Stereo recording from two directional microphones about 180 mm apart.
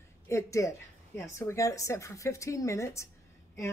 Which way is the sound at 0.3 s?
15° left (ahead or behind).